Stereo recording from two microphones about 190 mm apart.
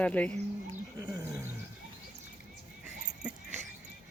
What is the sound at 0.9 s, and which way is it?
Speech, 15° right (ahead or behind).